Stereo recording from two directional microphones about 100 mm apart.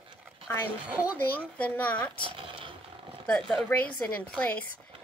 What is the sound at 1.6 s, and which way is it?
Speech, 15° left (ahead or behind).